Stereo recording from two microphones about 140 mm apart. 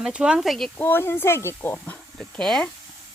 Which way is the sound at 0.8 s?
15° left (ahead or behind).